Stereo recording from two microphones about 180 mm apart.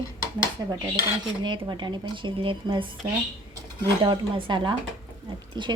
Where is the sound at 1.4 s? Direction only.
25° right (ahead or behind).